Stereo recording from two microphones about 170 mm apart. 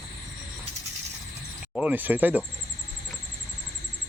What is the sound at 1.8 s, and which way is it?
Speech, 10° right (ahead or behind).